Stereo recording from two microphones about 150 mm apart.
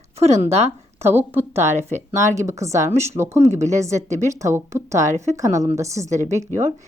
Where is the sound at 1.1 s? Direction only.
15° right (ahead or behind).